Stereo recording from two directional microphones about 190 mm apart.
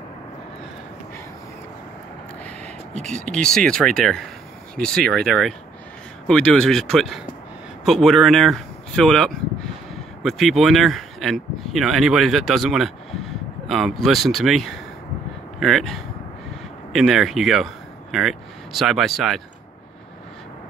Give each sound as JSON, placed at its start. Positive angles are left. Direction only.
{"t": 3.1, "sound": "speech", "side_deg": 5}